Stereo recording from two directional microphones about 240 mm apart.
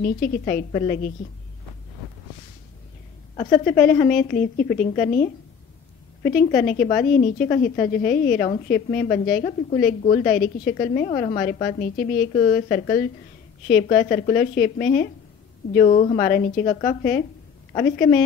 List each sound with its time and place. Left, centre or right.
0.0 s a woman's voice: left
3.9 s a woman's voice: left